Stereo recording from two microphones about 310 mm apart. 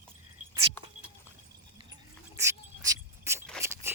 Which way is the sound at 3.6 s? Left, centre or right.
Centre.